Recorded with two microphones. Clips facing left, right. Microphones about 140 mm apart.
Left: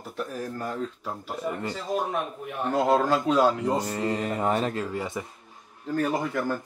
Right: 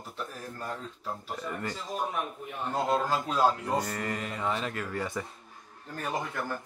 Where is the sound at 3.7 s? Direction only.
25° left (ahead or behind).